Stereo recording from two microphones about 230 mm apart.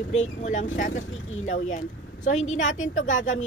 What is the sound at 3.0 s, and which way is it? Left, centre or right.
Speech, left.